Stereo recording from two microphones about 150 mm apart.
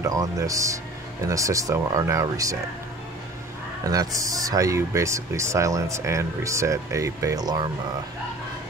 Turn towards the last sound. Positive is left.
turn(degrees=-25)  # may be behind; listen again after turning